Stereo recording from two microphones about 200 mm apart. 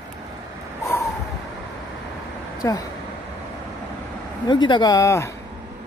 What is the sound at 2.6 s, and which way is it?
Speech, 20° left (ahead or behind).